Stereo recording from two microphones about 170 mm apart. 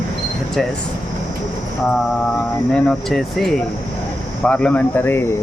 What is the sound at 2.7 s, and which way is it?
Speech, 5° left (ahead or behind).